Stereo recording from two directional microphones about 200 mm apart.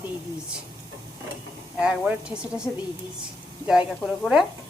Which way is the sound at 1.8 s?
5° right (ahead or behind).